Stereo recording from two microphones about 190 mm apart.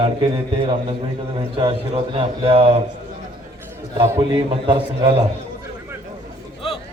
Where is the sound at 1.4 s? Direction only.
30° right (ahead or behind).